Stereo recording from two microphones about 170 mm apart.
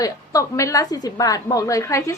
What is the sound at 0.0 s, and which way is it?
A woman's voice, 20° left (ahead or behind).